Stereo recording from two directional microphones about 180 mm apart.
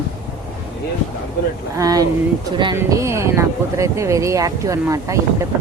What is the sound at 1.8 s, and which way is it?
Speech, 20° right (ahead or behind).